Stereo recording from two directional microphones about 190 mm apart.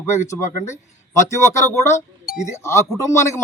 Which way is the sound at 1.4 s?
15° left (ahead or behind).